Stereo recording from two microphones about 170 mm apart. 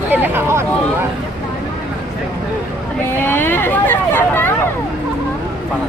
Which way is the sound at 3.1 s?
10° left (ahead or behind).